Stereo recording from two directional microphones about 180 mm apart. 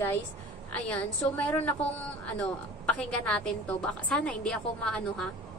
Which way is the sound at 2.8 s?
5° left (ahead or behind).